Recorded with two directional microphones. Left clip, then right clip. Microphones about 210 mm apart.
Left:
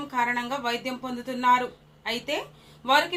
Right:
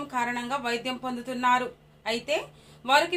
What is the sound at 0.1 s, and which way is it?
Speech, 40° right (ahead or behind).